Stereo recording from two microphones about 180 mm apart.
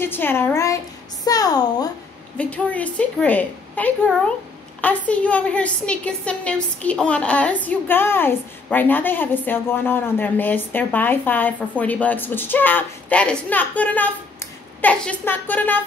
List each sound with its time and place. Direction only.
0.0 s a woman's voice: 10° left (ahead or behind)
2.3 s a woman's voice: 5° left (ahead or behind)